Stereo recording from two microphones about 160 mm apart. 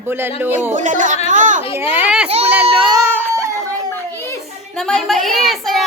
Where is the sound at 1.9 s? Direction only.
10° right (ahead or behind).